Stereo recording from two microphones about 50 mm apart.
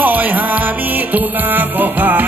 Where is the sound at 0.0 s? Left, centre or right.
Right.